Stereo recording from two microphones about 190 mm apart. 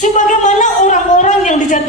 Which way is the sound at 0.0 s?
40° left (ahead or behind).